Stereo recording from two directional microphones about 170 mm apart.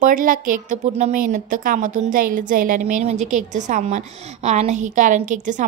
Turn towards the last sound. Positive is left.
turn(degrees=-45)  # may be behind; listen again after turning